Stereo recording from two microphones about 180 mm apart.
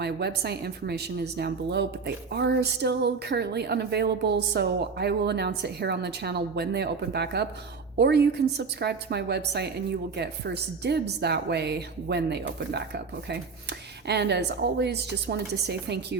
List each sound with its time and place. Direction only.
0.0 s speech: 65° right (ahead or behind)